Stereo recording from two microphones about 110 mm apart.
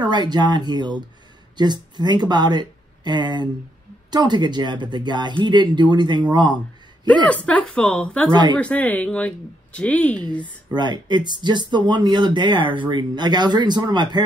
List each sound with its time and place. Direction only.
0.0 s speech: 40° right (ahead or behind)
7.2 s speech: 10° left (ahead or behind)
8.3 s speech: 40° right (ahead or behind)
8.5 s speech: 10° left (ahead or behind)
10.7 s speech: 40° right (ahead or behind)